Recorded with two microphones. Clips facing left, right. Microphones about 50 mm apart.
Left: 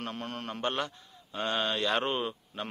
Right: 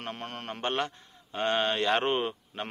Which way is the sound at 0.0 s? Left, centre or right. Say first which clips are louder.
Even; right.